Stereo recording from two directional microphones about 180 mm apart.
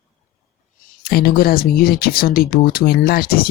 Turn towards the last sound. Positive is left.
turn(degrees=55)  # may be behind; listen again after turning